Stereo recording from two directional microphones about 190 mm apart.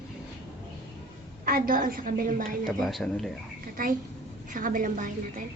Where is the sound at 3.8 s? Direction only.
50° right (ahead or behind).